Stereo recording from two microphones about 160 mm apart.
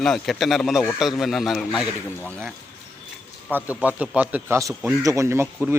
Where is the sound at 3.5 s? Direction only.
10° right (ahead or behind).